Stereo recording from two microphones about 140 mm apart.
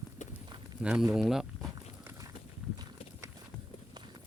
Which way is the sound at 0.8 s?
5° right (ahead or behind).